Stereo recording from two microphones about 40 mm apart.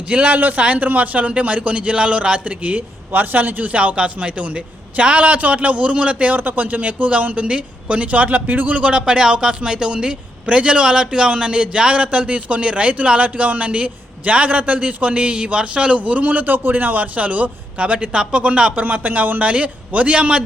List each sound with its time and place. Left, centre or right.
0.1 s a man's voice: right
3.9 s a man's voice: right
6.3 s a man's voice: right
15.1 s a man's voice: right
18.8 s a man's voice: right